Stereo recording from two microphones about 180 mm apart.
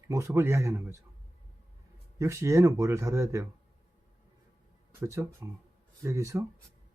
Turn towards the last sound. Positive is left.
turn(degrees=-15)  # may be behind; listen again after turning